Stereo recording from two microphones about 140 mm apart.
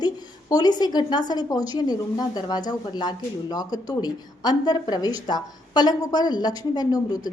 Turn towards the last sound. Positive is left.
turn(degrees=25)  # may be behind; listen again after turning